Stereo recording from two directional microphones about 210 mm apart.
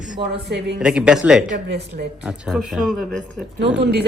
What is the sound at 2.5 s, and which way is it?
Speech, centre (ahead or behind).